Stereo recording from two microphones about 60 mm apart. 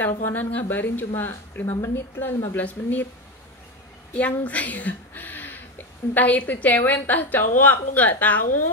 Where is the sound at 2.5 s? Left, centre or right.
Left.